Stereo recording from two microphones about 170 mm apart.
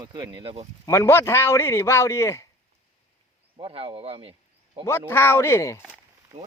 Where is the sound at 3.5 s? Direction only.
30° right (ahead or behind).